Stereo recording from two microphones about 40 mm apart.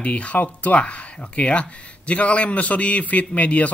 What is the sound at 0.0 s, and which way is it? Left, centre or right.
Speech, left.